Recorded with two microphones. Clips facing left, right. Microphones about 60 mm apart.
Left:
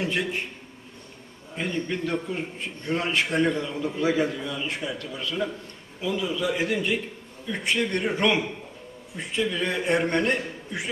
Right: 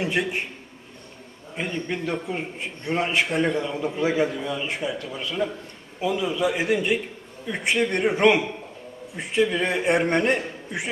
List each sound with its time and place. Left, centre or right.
0.0 s a man's voice: centre
1.5 s a man's voice: centre